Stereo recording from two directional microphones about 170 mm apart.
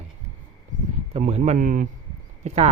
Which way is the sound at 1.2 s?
40° right (ahead or behind).